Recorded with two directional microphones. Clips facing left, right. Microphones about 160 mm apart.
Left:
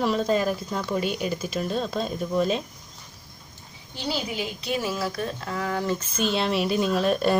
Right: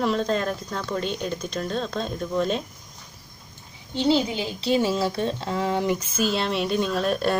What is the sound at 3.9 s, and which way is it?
A woman's voice, 25° right (ahead or behind).